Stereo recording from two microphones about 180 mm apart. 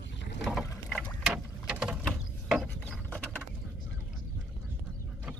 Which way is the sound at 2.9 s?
10° left (ahead or behind).